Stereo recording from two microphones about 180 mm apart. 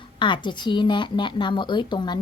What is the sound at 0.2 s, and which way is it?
A woman's voice, 25° left (ahead or behind).